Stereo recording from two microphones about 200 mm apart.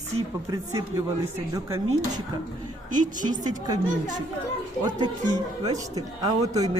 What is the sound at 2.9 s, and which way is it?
Speech, 40° right (ahead or behind).